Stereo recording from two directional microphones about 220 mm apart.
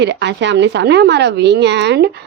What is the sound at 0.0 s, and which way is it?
A woman's voice, 50° right (ahead or behind).